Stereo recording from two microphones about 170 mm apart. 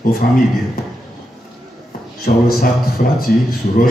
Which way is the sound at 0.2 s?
60° left (ahead or behind).